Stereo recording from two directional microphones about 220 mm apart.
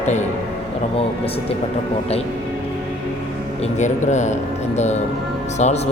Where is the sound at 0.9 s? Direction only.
25° left (ahead or behind).